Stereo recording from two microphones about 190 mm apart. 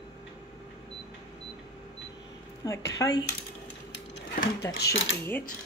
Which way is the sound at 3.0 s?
20° left (ahead or behind).